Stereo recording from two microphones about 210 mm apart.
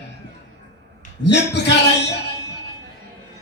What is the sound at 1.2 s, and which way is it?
Speech, 55° left (ahead or behind).